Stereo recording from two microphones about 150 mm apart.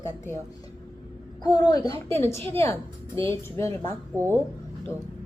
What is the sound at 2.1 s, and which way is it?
A woman's voice, 15° left (ahead or behind).